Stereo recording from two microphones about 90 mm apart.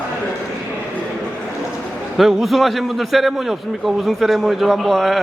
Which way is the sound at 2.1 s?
Centre (ahead or behind).